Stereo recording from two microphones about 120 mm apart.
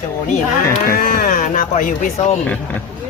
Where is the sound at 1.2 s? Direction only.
90° left.